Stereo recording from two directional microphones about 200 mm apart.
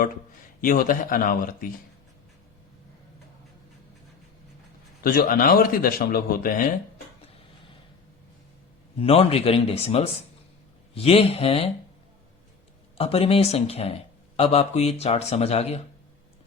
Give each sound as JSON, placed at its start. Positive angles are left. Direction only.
{"t": 0.6, "sound": "speech", "side_deg": 45}
{"t": 5.0, "sound": "speech", "side_deg": 45}
{"t": 9.0, "sound": "speech", "side_deg": 30}
{"t": 13.0, "sound": "a man's voice", "side_deg": 30}